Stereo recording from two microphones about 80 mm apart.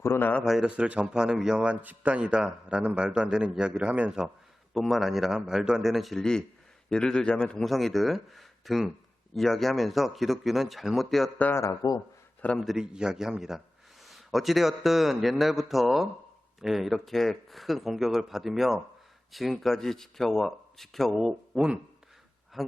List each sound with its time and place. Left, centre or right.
0.0 s speech: left
0.4 s a man's voice: centre
4.7 s a man's voice: centre
7.6 s speech: centre
11.8 s speech: left
12.5 s a man's voice: centre
22.6 s speech: centre